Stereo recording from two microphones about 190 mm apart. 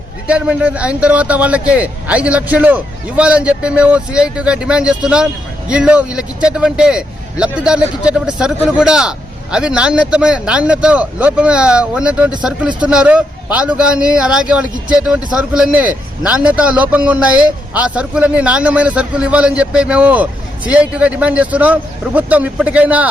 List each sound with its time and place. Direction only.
0.3 s a man's voice: 5° right (ahead or behind)